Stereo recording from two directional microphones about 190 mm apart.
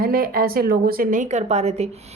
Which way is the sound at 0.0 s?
50° right (ahead or behind).